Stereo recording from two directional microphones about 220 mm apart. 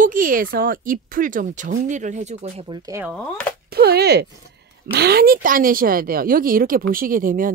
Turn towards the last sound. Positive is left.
turn(degrees=-40)  # may be behind; listen again after turning